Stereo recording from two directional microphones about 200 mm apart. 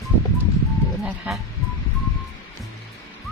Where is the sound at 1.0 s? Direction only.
5° right (ahead or behind).